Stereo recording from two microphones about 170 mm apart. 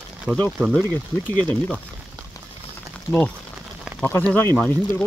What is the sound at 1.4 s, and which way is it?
Speech, 10° left (ahead or behind).